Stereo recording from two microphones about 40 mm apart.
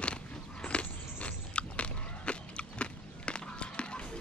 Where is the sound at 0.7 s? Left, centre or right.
Left.